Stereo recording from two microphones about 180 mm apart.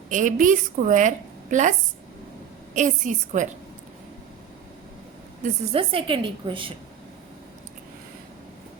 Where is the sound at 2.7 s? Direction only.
45° right (ahead or behind).